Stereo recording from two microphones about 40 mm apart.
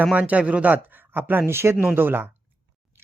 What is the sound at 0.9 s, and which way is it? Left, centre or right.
Speech, right.